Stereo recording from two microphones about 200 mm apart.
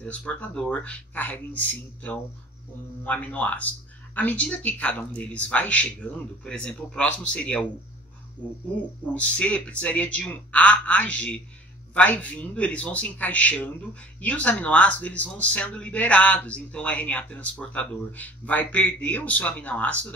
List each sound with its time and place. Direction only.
0.0 s speech: 5° left (ahead or behind)
3.0 s speech: 5° left (ahead or behind)